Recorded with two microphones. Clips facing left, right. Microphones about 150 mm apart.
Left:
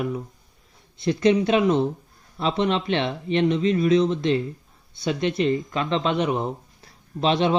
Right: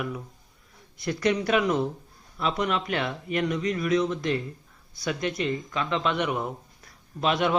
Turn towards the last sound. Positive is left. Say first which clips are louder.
# left 4 dB
turn(degrees=25)  # may be behind; listen again after turning